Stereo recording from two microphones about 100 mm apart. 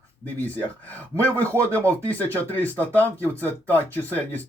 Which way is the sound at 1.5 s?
25° right (ahead or behind).